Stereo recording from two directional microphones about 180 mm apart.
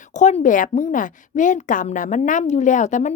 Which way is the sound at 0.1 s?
40° left (ahead or behind).